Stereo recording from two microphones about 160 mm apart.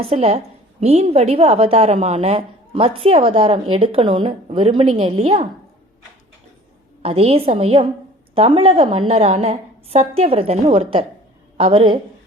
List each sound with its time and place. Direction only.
0.0 s a woman's voice: 40° right (ahead or behind)
7.0 s a woman's voice: 40° right (ahead or behind)